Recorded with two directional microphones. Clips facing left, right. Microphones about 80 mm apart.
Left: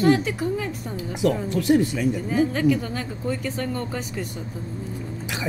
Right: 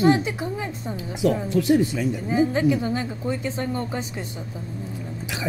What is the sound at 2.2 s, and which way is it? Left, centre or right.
Speech, centre.